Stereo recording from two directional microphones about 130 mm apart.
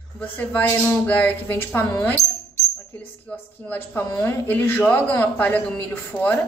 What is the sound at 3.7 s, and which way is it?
Speech, 15° left (ahead or behind).